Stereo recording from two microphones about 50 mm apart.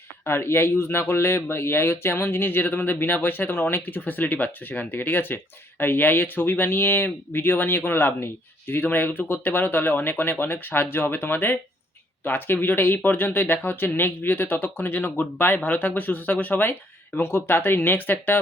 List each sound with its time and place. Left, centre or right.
0.3 s speech: left
15.7 s speech: left
17.2 s speech: left